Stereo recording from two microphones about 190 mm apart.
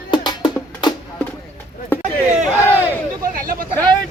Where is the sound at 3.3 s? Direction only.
50° right (ahead or behind).